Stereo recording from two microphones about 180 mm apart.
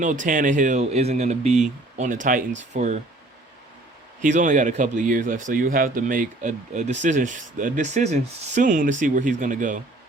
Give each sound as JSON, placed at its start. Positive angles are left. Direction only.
{"t": 0.0, "sound": "speech", "side_deg": -45}
{"t": 4.2, "sound": "speech", "side_deg": -45}